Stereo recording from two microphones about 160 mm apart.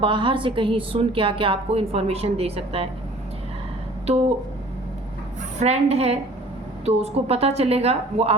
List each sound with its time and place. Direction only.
0.0 s a woman's voice: 30° right (ahead or behind)
5.5 s a woman's voice: 45° right (ahead or behind)